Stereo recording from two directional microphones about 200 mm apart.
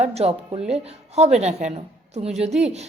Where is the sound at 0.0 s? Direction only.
30° right (ahead or behind).